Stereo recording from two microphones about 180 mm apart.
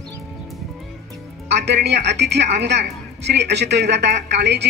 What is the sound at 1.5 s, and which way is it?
Speech, 65° right (ahead or behind).